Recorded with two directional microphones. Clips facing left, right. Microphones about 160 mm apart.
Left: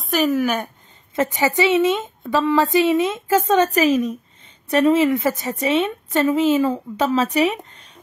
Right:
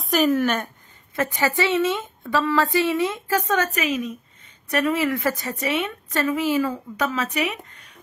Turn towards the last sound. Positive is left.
turn(degrees=25)  # may be behind; listen again after turning